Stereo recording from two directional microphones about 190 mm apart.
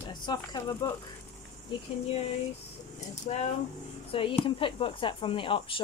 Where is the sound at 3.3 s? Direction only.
40° left (ahead or behind).